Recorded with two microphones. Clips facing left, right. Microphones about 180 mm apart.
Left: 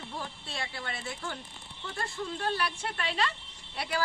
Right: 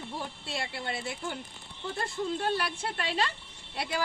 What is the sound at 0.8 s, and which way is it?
Speech, 25° right (ahead or behind).